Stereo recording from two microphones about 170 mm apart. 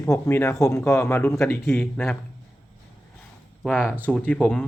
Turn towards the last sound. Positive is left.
turn(degrees=5)  # may be behind; listen again after turning